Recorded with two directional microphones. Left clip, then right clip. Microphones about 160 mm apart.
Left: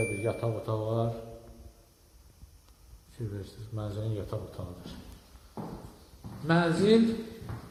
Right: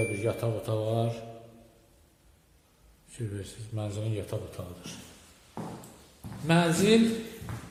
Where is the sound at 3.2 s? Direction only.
25° right (ahead or behind).